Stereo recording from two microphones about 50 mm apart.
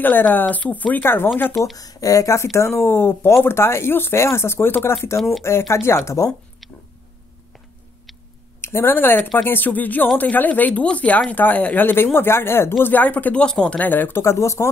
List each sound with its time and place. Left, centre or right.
0.0 s speech: left
1.0 s speech: left
2.0 s speech: left
2.5 s speech: left
8.5 s a sound: left
8.9 s speech: left
12.8 s speech: left
13.4 s speech: centre
13.7 s speech: left
14.2 s speech: left